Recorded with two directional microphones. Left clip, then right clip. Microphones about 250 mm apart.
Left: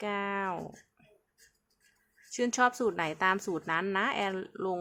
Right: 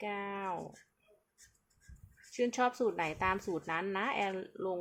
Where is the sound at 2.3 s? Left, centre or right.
Centre.